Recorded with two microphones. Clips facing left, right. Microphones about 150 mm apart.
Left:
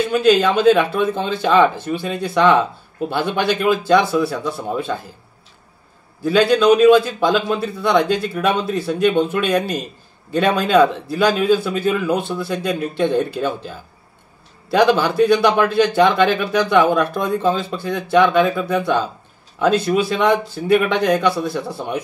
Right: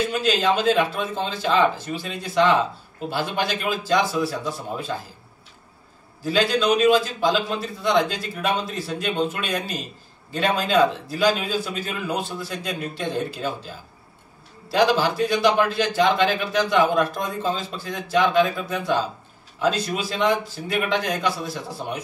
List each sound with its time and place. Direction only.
0.2 s a man's voice: 60° left (ahead or behind)
6.2 s a man's voice: 60° left (ahead or behind)
14.7 s a man's voice: 55° left (ahead or behind)